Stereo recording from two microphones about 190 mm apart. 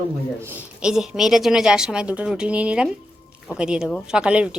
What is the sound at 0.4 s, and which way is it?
Speech, 10° right (ahead or behind).